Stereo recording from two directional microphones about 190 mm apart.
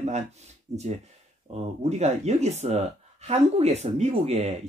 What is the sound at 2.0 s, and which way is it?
Speech, 35° right (ahead or behind).